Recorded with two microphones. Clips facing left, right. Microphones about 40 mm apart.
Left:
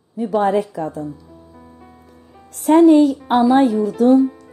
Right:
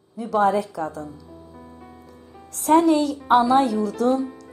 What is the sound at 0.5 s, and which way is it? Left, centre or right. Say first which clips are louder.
Speech: left 3 dB; left.